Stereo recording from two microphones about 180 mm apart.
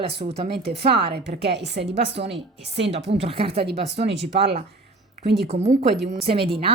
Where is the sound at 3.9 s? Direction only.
75° right (ahead or behind).